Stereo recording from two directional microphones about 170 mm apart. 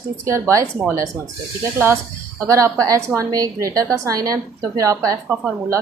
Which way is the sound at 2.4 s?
20° right (ahead or behind).